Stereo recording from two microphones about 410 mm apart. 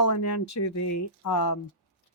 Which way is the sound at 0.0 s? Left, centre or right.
Left.